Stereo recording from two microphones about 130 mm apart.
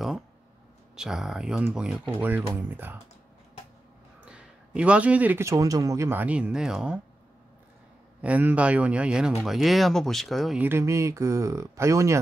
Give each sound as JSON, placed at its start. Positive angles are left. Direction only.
{"t": 0.9, "sound": "a man's voice", "side_deg": -5}
{"t": 4.2, "sound": "a man's voice", "side_deg": -10}
{"t": 8.2, "sound": "a man's voice", "side_deg": -10}
{"t": 10.6, "sound": "speech", "side_deg": -20}